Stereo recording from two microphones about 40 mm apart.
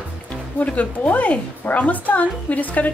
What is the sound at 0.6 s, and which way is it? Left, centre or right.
Speech, left.